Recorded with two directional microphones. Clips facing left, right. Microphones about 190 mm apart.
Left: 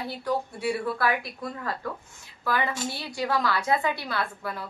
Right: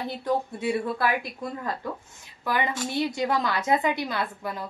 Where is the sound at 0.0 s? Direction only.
20° right (ahead or behind).